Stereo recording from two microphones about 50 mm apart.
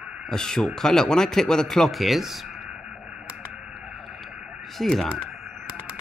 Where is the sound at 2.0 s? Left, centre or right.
Centre.